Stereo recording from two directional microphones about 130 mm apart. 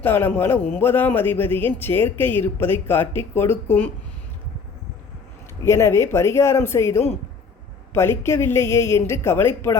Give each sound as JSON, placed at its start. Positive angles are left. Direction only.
{"t": 0.0, "sound": "a man's voice", "side_deg": 15}
{"t": 5.6, "sound": "a woman's voice", "side_deg": 20}